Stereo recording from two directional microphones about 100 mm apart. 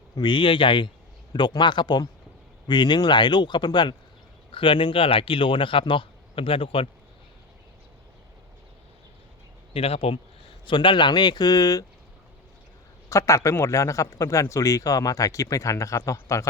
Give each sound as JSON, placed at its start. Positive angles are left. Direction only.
{"t": 0.2, "sound": "speech", "side_deg": 55}
{"t": 4.5, "sound": "speech", "side_deg": 60}
{"t": 9.7, "sound": "speech", "side_deg": 80}
{"t": 10.7, "sound": "speech", "side_deg": 55}
{"t": 13.1, "sound": "a man's voice", "side_deg": 30}